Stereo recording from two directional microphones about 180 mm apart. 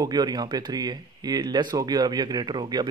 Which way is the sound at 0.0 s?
20° right (ahead or behind).